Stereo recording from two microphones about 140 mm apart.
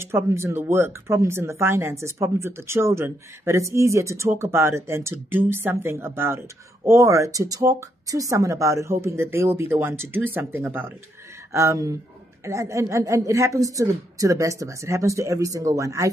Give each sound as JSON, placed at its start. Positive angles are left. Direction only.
{"t": 0.0, "sound": "speech", "side_deg": -20}